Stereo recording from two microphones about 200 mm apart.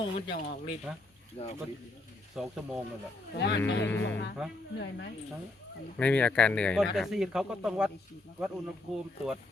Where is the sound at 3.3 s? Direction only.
60° left (ahead or behind).